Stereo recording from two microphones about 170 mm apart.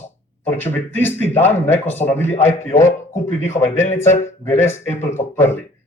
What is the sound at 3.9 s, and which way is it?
Speech, 15° left (ahead or behind).